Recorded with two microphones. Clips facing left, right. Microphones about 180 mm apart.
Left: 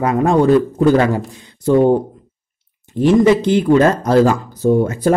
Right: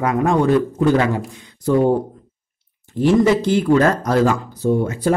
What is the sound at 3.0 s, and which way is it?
Speech, 20° left (ahead or behind).